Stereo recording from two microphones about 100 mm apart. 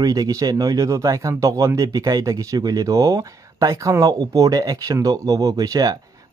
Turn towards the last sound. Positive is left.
turn(degrees=-40)  # may be behind; listen again after turning